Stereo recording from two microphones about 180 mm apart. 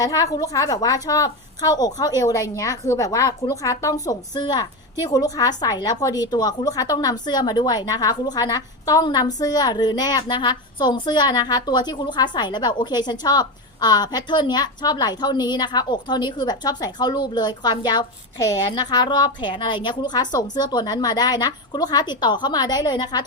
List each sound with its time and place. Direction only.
0.0 s a woman's voice: 20° left (ahead or behind)